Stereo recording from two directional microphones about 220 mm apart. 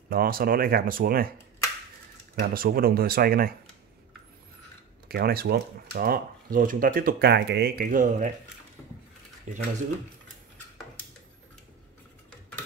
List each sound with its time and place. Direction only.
0.1 s speech: 40° right (ahead or behind)
2.3 s speech: 45° right (ahead or behind)
5.0 s speech: 45° right (ahead or behind)
9.5 s speech: 35° right (ahead or behind)